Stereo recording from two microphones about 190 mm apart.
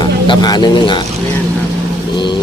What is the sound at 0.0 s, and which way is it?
Speech, 20° left (ahead or behind).